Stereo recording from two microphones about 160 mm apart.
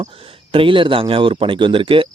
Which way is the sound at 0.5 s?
35° right (ahead or behind).